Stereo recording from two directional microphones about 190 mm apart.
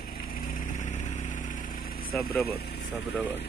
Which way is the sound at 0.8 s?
40° left (ahead or behind).